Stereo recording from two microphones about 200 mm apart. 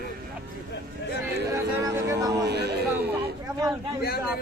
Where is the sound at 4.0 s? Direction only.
50° left (ahead or behind).